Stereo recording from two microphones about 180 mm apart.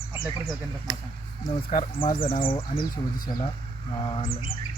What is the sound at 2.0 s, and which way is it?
Speech, 30° left (ahead or behind).